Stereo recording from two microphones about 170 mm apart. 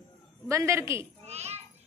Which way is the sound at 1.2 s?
40° right (ahead or behind).